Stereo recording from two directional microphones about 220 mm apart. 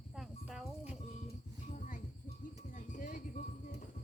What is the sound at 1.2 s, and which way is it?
Music, 35° left (ahead or behind).